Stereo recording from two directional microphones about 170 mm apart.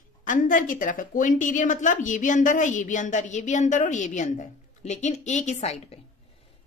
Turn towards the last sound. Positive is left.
turn(degrees=40)  # may be behind; listen again after turning